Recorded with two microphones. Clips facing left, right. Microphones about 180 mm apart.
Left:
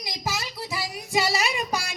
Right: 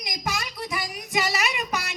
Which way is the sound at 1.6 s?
30° left (ahead or behind).